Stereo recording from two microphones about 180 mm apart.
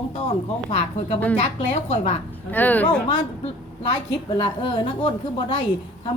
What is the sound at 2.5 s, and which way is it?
Speech, 10° left (ahead or behind).